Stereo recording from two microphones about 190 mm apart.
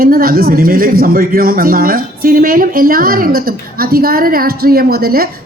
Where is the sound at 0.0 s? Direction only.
50° right (ahead or behind).